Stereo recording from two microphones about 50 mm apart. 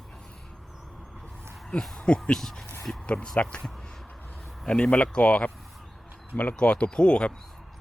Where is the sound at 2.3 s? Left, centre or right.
Centre.